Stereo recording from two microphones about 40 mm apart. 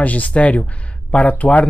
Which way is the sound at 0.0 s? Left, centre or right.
Left.